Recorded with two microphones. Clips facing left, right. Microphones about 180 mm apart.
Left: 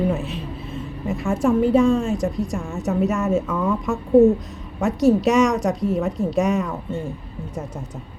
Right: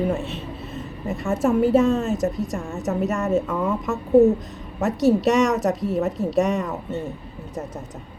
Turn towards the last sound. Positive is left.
turn(degrees=0)  # may be behind; listen again after turning